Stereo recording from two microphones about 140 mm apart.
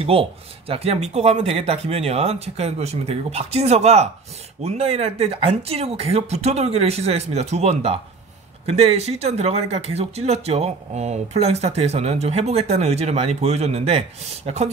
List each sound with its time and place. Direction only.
0.0 s speech: 45° right (ahead or behind)